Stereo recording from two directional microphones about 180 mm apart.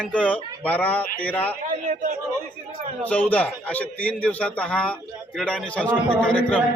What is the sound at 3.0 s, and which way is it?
A man's voice, 10° left (ahead or behind).